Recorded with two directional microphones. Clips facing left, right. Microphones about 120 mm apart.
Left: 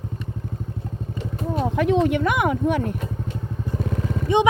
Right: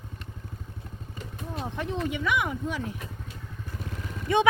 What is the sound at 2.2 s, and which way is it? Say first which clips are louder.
Speech: left 7 dB; 55° left (ahead or behind).